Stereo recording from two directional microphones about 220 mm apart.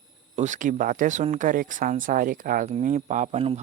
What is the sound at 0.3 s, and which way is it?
Speech, 35° right (ahead or behind).